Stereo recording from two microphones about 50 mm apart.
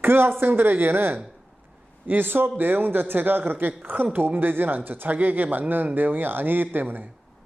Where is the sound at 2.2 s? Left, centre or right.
Right.